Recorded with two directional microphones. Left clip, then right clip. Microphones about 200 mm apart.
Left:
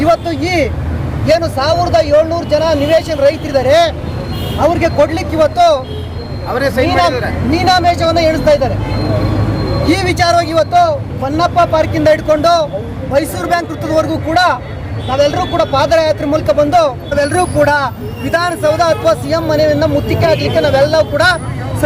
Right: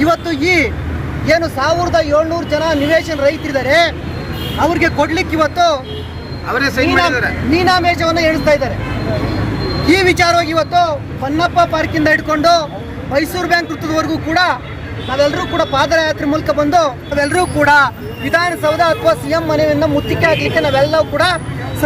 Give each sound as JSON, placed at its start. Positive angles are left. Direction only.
{"t": 0.0, "sound": "speech", "side_deg": 10}
{"t": 6.5, "sound": "speech", "side_deg": -30}
{"t": 7.5, "sound": "speech", "side_deg": 15}
{"t": 9.9, "sound": "speech", "side_deg": 10}